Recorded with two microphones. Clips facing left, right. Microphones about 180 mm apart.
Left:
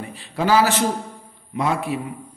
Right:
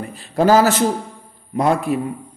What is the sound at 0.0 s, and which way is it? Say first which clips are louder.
A man's voice: right 7 dB; 45° right (ahead or behind).